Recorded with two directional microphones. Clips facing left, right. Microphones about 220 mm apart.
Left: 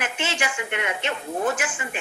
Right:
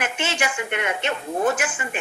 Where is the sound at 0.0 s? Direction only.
50° right (ahead or behind).